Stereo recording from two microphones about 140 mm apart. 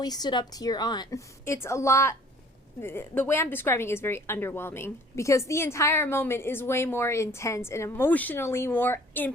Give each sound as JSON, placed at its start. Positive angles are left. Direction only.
{"t": 0.0, "sound": "a woman's voice", "side_deg": 30}